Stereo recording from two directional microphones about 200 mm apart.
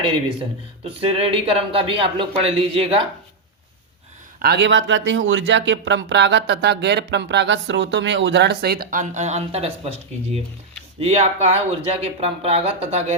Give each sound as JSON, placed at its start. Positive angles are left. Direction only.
{"t": 1.1, "sound": "speech", "side_deg": -30}
{"t": 4.4, "sound": "speech", "side_deg": -55}